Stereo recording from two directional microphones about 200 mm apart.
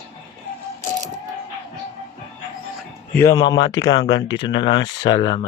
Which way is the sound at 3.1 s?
15° left (ahead or behind).